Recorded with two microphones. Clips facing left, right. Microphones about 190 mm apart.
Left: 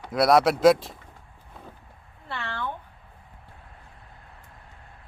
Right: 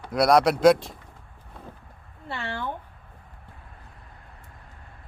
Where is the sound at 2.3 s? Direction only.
25° right (ahead or behind).